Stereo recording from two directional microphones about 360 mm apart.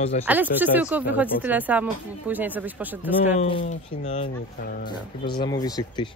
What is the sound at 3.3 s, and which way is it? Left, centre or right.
A man's voice, centre.